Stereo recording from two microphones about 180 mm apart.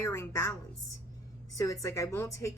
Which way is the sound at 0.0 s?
15° left (ahead or behind).